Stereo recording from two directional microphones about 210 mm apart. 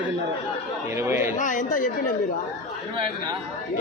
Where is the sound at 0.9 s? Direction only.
10° right (ahead or behind).